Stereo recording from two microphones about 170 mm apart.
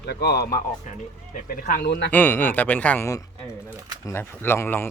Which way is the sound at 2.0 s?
10° left (ahead or behind).